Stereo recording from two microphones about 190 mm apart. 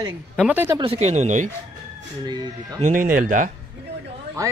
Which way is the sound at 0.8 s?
30° right (ahead or behind).